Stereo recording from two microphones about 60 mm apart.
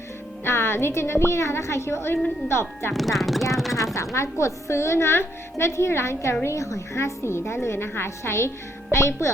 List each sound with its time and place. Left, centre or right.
0.4 s a woman's voice: left
2.9 s speech: centre
3.5 s a sound: centre
3.9 s a woman's voice: left